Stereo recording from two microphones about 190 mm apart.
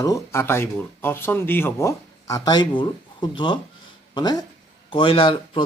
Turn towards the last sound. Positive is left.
turn(degrees=25)  # may be behind; listen again after turning